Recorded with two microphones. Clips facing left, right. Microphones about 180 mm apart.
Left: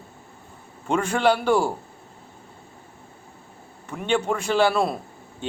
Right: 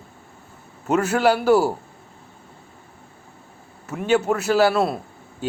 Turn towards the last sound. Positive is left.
turn(degrees=-5)  # may be behind; listen again after turning